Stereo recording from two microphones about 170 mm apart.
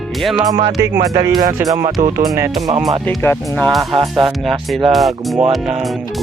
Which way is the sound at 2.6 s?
40° right (ahead or behind).